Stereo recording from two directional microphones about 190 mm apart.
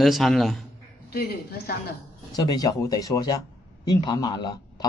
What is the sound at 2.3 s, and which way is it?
Speech, 20° left (ahead or behind).